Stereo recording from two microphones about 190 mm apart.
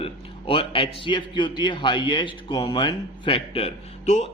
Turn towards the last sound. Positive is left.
turn(degrees=35)  # may be behind; listen again after turning